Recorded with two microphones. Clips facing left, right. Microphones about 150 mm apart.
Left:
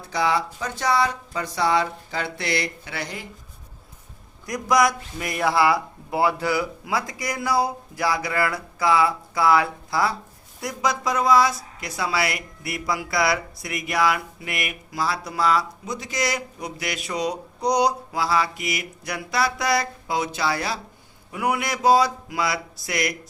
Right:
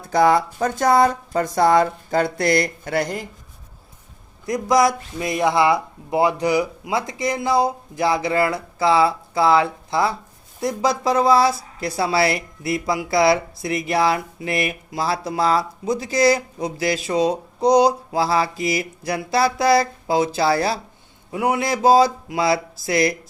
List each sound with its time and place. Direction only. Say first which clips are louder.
0.1 s speech: right 7 dB; 50° right (ahead or behind)
4.4 s speech: right 3 dB; 25° right (ahead or behind)